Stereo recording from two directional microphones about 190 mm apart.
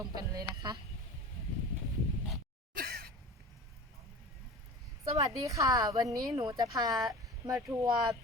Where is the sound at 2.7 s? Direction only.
55° right (ahead or behind).